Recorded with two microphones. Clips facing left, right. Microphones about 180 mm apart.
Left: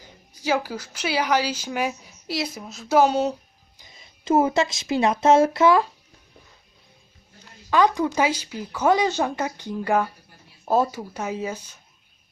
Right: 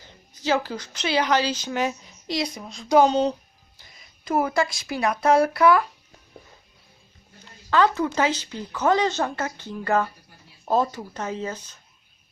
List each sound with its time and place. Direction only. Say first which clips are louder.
0.0 s a woman's voice: even; 10° left (ahead or behind)
3.8 s speech: left 3 dB; 25° left (ahead or behind)
7.7 s speech: left 1 dB; 15° left (ahead or behind)